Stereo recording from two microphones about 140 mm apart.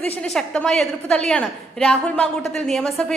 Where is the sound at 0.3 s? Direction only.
5° left (ahead or behind).